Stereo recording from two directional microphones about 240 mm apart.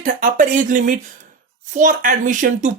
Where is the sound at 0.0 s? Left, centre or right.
Right.